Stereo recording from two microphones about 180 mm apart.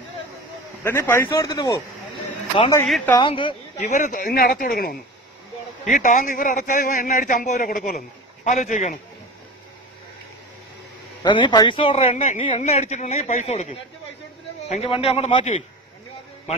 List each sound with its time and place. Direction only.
0.8 s a man's voice: 15° left (ahead or behind)
3.2 s speech: 30° left (ahead or behind)
3.8 s a man's voice: 45° left (ahead or behind)
11.2 s a man's voice: 25° left (ahead or behind)